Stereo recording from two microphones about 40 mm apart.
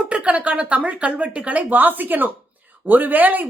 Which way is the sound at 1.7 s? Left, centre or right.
Right.